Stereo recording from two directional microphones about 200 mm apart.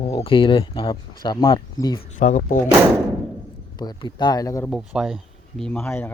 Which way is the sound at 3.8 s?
20° left (ahead or behind).